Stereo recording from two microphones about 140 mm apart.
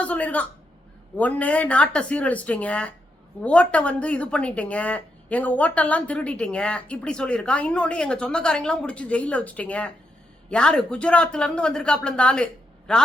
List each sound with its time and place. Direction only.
0.0 s a man's voice: 10° left (ahead or behind)